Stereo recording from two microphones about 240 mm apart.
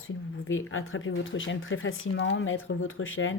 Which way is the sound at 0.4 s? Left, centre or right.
Left.